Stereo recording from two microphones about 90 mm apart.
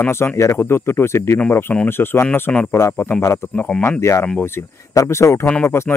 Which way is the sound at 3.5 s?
10° left (ahead or behind).